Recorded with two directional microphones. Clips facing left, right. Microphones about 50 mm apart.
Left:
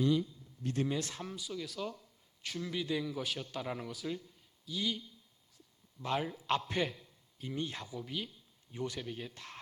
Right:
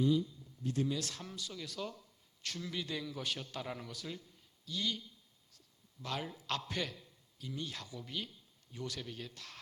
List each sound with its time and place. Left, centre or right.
0.0 s a man's voice: left
0.9 s speech: left
1.2 s a man's voice: centre
5.5 s a sound: centre
7.3 s speech: left
7.9 s a man's voice: centre
8.7 s a man's voice: left